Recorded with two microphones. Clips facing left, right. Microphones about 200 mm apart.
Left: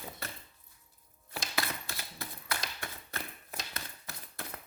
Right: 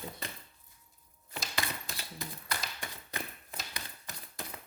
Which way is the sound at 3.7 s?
15° right (ahead or behind).